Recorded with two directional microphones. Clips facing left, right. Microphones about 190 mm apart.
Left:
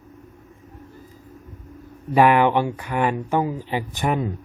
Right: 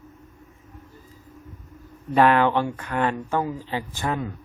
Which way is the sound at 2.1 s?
10° left (ahead or behind).